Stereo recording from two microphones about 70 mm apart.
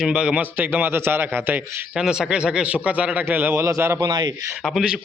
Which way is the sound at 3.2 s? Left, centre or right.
Right.